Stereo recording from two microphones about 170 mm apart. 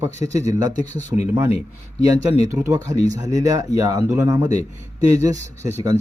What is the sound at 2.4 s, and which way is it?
Speech, 15° right (ahead or behind).